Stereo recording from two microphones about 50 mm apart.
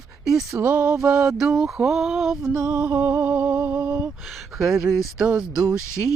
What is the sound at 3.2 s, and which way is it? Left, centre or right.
Music, right.